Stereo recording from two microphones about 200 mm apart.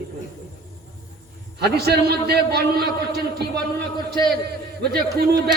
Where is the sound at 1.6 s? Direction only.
55° right (ahead or behind).